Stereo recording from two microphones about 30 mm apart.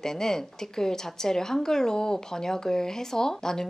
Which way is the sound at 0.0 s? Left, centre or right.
Centre.